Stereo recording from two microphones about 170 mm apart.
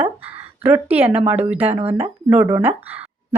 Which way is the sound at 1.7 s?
35° right (ahead or behind).